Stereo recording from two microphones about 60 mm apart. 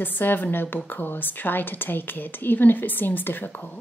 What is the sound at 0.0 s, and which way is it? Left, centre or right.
A woman's voice, left.